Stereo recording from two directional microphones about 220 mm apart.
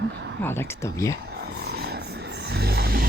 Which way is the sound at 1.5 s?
45° right (ahead or behind).